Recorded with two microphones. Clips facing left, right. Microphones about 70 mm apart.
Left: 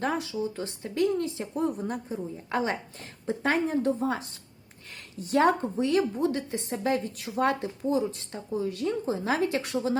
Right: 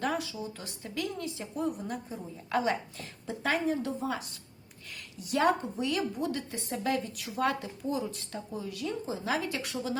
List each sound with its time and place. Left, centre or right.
0.0 s a woman's voice: left
8.6 s a woman's voice: left